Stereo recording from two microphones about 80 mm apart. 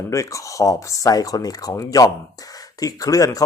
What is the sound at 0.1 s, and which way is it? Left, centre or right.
Speech, left.